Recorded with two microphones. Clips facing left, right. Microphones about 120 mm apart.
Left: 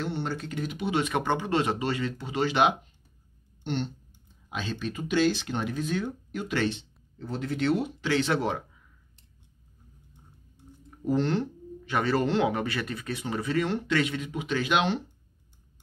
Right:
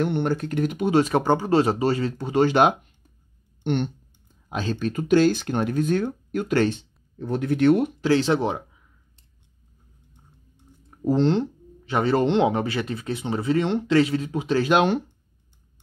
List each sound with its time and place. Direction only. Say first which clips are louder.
0.0 s speech: right 8 dB; 60° right (ahead or behind)
3.6 s speech: right 7 dB; 60° right (ahead or behind)
4.5 s speech: right 7 dB; 45° right (ahead or behind); by 7.9 s 60° right (ahead or behind)
8.0 s speech: right 6 dB; 35° right (ahead or behind)
8.3 s speech: right 5 dB; 20° right (ahead or behind)
11.1 s speech: right 6 dB; 30° right (ahead or behind); by 15.0 s 45° right (ahead or behind)